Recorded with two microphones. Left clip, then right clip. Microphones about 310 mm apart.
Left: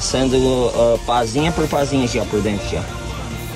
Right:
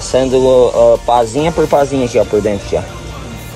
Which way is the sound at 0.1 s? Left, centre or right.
Centre.